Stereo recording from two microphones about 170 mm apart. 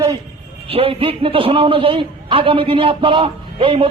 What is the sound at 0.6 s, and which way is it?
A man's voice, 35° right (ahead or behind).